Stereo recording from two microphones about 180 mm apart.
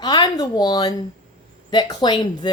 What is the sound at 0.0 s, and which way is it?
A woman's voice, 25° left (ahead or behind).